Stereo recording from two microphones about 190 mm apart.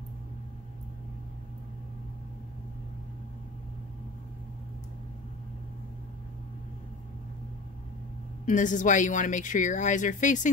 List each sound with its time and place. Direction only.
8.5 s a woman's voice: 40° left (ahead or behind)